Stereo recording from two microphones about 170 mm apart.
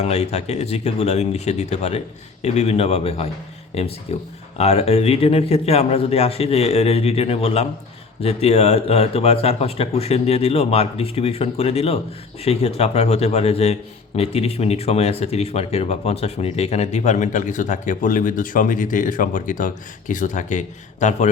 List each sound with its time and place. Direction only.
0.0 s speech: 40° left (ahead or behind)